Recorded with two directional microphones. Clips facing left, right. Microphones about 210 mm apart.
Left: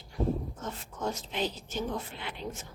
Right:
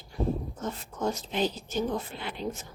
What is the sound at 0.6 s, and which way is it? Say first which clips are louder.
A woman's voice: right 5 dB; 40° right (ahead or behind).